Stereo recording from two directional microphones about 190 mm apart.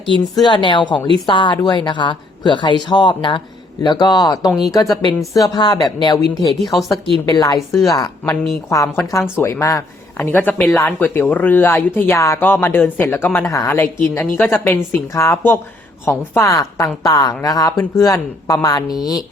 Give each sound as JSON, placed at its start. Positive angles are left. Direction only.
{"t": 0.0, "sound": "a woman's voice", "side_deg": 25}
{"t": 6.6, "sound": "speech", "side_deg": 0}
{"t": 7.3, "sound": "a woman's voice", "side_deg": 20}